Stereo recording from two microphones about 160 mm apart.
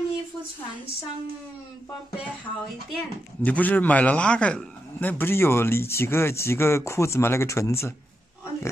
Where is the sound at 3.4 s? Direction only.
10° left (ahead or behind).